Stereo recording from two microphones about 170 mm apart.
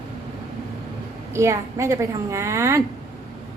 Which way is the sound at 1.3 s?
15° right (ahead or behind).